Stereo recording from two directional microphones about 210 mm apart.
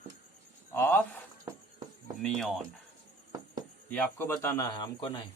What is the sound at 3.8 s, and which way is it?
Speech, 5° left (ahead or behind).